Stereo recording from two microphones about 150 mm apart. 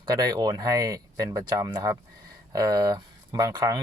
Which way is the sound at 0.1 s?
25° right (ahead or behind).